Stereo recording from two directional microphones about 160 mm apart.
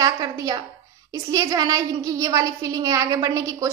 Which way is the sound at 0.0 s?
25° right (ahead or behind).